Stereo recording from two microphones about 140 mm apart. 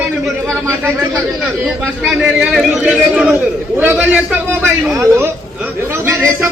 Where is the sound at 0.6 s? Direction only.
20° right (ahead or behind).